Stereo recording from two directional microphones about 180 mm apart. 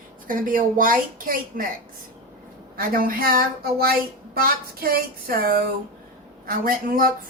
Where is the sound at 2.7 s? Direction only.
55° right (ahead or behind).